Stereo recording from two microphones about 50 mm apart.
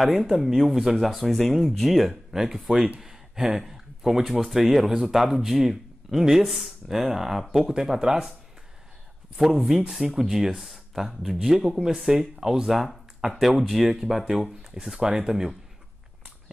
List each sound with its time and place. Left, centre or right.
0.3 s speech: centre
3.0 s a sound: centre
4.4 s speech: centre
9.7 s speech: centre